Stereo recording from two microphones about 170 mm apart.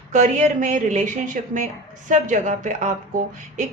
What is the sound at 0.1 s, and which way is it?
A woman's voice, 45° right (ahead or behind).